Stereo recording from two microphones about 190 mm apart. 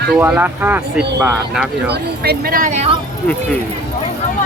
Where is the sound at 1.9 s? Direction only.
55° right (ahead or behind); by 2.9 s 35° right (ahead or behind).